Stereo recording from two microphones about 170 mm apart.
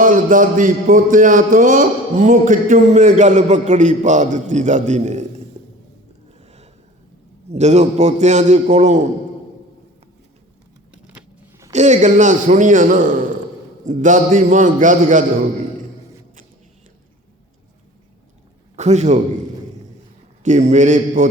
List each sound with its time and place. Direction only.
0.0 s a man's voice: 50° right (ahead or behind)
7.5 s a man's voice: 40° right (ahead or behind)
11.7 s a man's voice: 45° right (ahead or behind)
18.8 s a man's voice: 40° right (ahead or behind)
20.4 s a man's voice: 45° right (ahead or behind)